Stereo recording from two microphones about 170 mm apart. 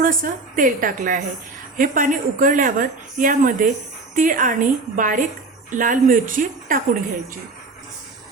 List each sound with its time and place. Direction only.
0.0 s speech: 55° right (ahead or behind)